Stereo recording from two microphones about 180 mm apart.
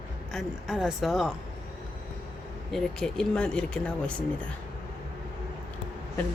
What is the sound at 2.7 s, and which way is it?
Speech, 5° left (ahead or behind).